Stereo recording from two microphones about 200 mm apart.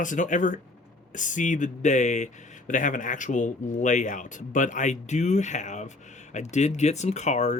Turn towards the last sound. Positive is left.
turn(degrees=35)  # may be behind; listen again after turning